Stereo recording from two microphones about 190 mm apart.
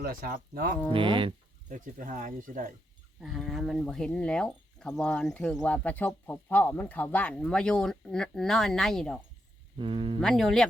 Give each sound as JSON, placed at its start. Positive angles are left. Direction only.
{"t": 0.0, "sound": "speech", "side_deg": -50}
{"t": 0.9, "sound": "speech", "side_deg": -25}
{"t": 1.7, "sound": "speech", "side_deg": -45}
{"t": 3.2, "sound": "speech", "side_deg": 0}
{"t": 9.7, "sound": "speech", "side_deg": -30}
{"t": 10.2, "sound": "speech", "side_deg": 0}